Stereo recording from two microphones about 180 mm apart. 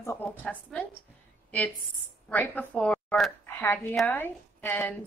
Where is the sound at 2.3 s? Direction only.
10° left (ahead or behind).